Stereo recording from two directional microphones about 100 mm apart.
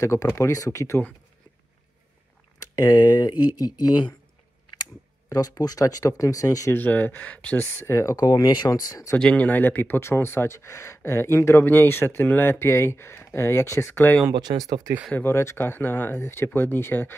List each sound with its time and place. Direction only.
0.0 s speech: 30° left (ahead or behind)
2.6 s a sound: 35° left (ahead or behind)
3.0 s speech: 40° left (ahead or behind)
5.3 s speech: 40° left (ahead or behind)
6.7 s speech: 15° left (ahead or behind)
7.8 s speech: 30° left (ahead or behind)
9.1 s speech: 10° left (ahead or behind)
13.9 s speech: 15° left (ahead or behind)
14.4 s speech: 40° right (ahead or behind)
15.1 s speech: 25° left (ahead or behind)